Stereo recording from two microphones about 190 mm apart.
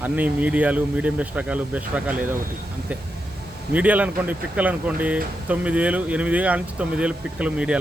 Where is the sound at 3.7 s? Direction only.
10° right (ahead or behind).